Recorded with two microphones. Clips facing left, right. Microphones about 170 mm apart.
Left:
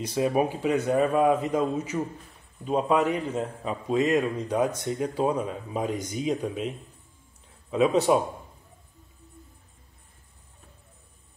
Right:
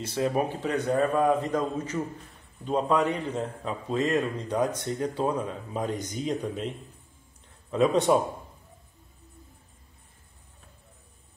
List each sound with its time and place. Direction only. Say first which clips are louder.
0.0 s a man's voice: left 2 dB; 15° left (ahead or behind)
7.7 s a man's voice: left 1 dB; 5° left (ahead or behind)